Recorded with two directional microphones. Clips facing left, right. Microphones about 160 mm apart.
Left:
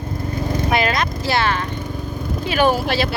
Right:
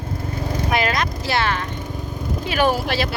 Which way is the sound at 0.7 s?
30° left (ahead or behind).